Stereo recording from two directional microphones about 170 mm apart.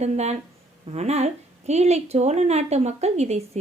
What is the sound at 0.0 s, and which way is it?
A woman's voice, 40° right (ahead or behind).